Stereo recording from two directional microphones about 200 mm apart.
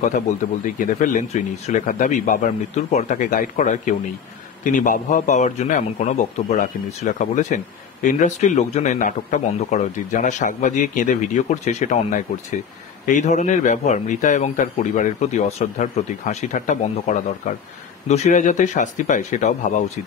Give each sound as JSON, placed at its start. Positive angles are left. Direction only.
{"t": 0.7, "sound": "a man's voice", "side_deg": 40}